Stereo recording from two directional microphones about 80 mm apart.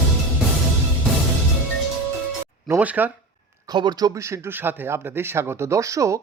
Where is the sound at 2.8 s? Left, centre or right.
Centre.